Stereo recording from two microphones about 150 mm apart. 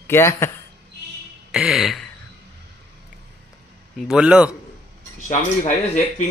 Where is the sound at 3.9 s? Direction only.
5° right (ahead or behind).